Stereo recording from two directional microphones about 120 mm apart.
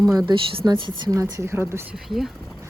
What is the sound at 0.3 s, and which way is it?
Speech, 45° right (ahead or behind).